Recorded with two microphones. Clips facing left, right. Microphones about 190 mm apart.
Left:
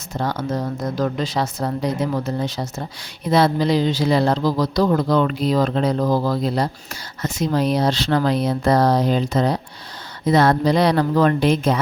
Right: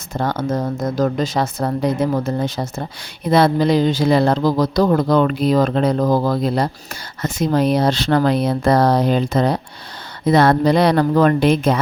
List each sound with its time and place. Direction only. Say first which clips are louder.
0.1 s speech: right 3 dB; 55° right (ahead or behind)